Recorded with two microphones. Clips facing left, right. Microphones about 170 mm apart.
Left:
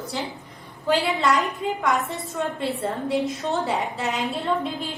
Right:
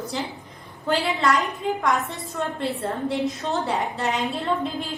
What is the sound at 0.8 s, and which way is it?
A woman's voice, centre (ahead or behind).